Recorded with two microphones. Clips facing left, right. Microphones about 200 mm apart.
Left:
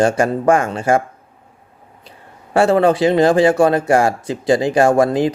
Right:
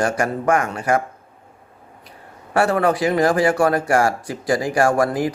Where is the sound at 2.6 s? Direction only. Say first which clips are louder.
Left 5 dB; 25° left (ahead or behind).